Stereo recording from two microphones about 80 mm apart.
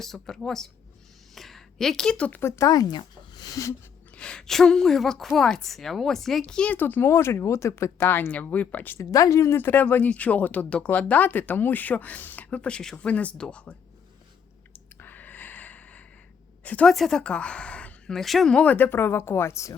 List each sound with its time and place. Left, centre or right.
0.0 s speech: centre
2.4 s speech: left
2.6 s speech: left
3.5 s speech: left
4.1 s speech: centre
6.7 s speech: left
7.1 s speech: left
9.0 s speech: left
9.6 s speech: left
15.0 s snort: left
16.8 s a woman's voice: centre
18.5 s speech: centre; by 19.7 s left